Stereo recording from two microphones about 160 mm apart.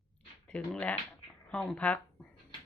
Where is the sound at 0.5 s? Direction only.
10° left (ahead or behind).